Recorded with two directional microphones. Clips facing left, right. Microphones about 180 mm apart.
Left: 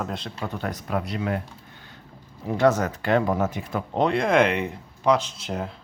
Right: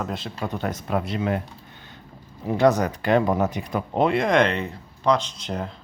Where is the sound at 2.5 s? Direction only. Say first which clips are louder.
Right 1 dB; 15° right (ahead or behind).